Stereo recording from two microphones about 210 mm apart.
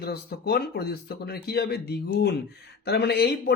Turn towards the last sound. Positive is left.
turn(degrees=50)  # may be behind; listen again after turning